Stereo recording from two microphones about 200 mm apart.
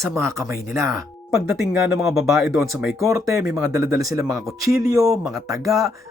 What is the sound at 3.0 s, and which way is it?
Speech, 15° right (ahead or behind).